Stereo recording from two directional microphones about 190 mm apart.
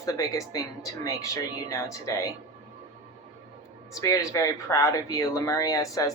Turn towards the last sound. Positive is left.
turn(degrees=20)  # may be behind; listen again after turning